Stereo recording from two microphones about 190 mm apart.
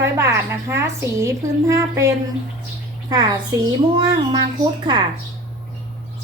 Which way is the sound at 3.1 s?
20° right (ahead or behind).